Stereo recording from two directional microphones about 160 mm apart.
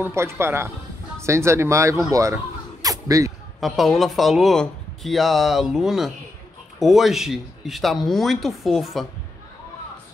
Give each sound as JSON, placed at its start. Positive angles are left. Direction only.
{"t": 0.0, "sound": "speech", "side_deg": -15}
{"t": 3.6, "sound": "speech", "side_deg": 0}